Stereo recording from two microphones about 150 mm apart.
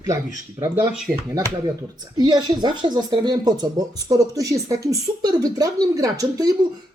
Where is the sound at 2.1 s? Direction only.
30° right (ahead or behind).